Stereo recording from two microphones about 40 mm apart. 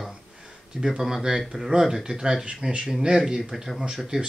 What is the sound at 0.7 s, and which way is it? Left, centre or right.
A man's voice, centre.